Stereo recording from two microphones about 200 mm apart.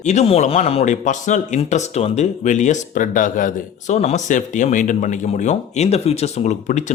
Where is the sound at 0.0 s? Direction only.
35° left (ahead or behind).